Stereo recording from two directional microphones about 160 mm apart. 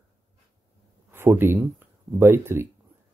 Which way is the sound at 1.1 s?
15° right (ahead or behind).